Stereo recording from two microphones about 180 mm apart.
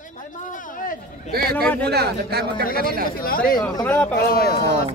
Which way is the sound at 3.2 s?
55° left (ahead or behind).